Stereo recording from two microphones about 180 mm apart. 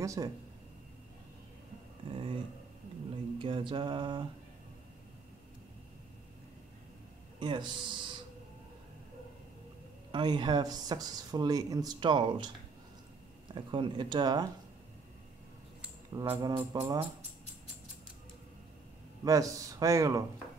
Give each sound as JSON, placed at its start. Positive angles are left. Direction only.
{"t": 0.0, "sound": "speech", "side_deg": -20}
{"t": 2.0, "sound": "speech", "side_deg": -30}
{"t": 3.3, "sound": "speech", "side_deg": -25}
{"t": 7.3, "sound": "a man's voice", "side_deg": -25}
{"t": 10.1, "sound": "speech", "side_deg": -25}
{"t": 13.6, "sound": "speech", "side_deg": -25}
{"t": 16.3, "sound": "speech", "side_deg": -25}
{"t": 16.8, "sound": "speech", "side_deg": -10}
{"t": 19.2, "sound": "speech", "side_deg": -20}